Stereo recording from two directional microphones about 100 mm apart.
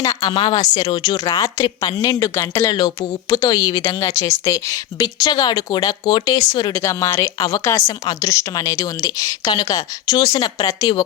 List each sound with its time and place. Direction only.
0.0 s a woman's voice: 40° left (ahead or behind)
6.7 s a woman's voice: 30° left (ahead or behind)